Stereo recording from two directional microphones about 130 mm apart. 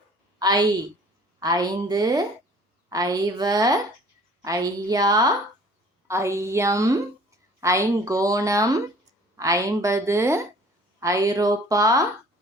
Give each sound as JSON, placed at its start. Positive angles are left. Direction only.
{"t": 0.3, "sound": "a woman's voice", "side_deg": -30}